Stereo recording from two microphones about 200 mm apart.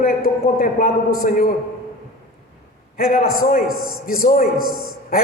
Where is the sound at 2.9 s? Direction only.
45° left (ahead or behind).